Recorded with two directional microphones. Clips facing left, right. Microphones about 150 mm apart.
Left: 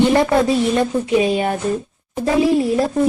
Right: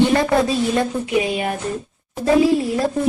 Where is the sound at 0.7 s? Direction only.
25° left (ahead or behind).